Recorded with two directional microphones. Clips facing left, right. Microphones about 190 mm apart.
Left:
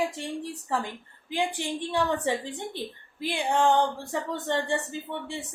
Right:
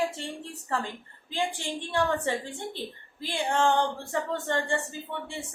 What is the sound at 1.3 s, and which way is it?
A woman's voice, 15° left (ahead or behind).